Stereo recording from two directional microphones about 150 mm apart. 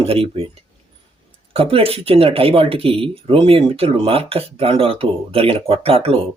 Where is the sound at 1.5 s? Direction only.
40° right (ahead or behind).